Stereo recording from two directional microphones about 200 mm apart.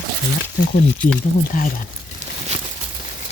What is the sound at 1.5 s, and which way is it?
Speech, 40° left (ahead or behind).